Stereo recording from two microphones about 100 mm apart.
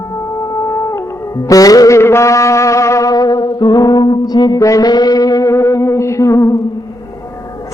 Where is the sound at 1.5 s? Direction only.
35° left (ahead or behind).